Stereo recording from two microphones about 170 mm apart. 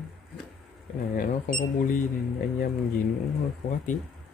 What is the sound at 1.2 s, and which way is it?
Speech, 55° left (ahead or behind).